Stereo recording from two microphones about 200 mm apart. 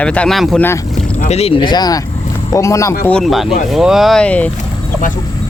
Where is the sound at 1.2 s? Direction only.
30° left (ahead or behind); by 2.9 s 15° left (ahead or behind).